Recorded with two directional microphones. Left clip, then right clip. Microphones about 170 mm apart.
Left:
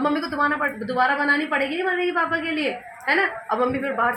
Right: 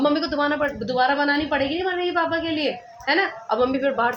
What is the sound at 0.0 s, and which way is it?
A woman's voice, 35° right (ahead or behind).